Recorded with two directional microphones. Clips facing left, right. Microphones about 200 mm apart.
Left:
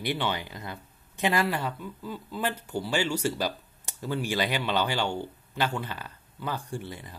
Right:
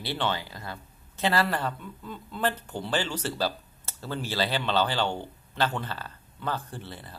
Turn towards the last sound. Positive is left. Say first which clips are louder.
# left 4 dB
turn(degrees=15)  # may be behind; listen again after turning